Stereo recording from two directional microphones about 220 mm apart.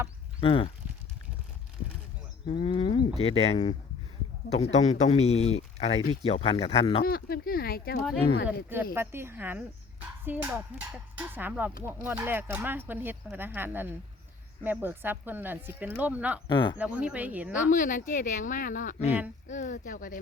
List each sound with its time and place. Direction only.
0.4 s speech: 25° left (ahead or behind)
2.5 s speech: 25° left (ahead or behind)
7.0 s speech: 45° left (ahead or behind)
9.0 s speech: 10° right (ahead or behind)
16.5 s speech: 20° left (ahead or behind)
16.7 s speech: 5° right (ahead or behind)
17.7 s a woman's voice: 35° left (ahead or behind)